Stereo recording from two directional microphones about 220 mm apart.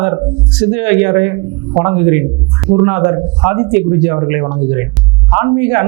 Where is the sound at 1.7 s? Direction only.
25° right (ahead or behind).